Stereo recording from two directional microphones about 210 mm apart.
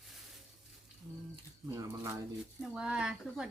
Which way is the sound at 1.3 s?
20° right (ahead or behind).